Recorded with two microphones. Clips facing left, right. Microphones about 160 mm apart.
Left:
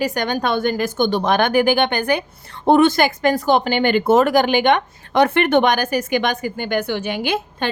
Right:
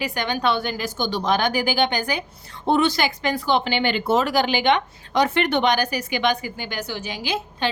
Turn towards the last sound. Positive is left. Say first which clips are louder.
# left 3 dB
turn(degrees=55)  # may be behind; listen again after turning